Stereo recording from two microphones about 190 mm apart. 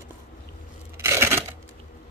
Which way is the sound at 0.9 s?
15° right (ahead or behind).